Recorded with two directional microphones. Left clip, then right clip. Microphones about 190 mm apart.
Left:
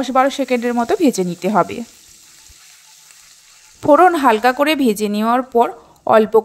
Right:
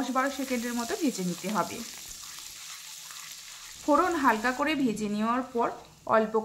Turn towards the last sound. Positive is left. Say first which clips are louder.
# left 13 dB
turn(degrees=40)  # may be behind; listen again after turning